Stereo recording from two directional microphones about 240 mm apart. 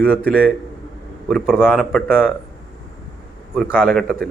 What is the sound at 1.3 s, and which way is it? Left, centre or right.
Speech, centre.